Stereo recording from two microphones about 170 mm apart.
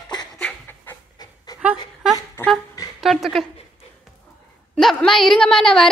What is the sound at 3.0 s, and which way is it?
Speech, centre (ahead or behind).